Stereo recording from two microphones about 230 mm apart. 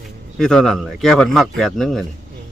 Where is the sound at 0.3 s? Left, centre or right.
Centre.